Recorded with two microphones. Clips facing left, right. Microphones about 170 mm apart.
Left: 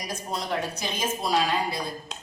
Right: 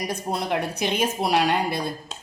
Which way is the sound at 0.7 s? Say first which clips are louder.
Right 6 dB; 60° right (ahead or behind).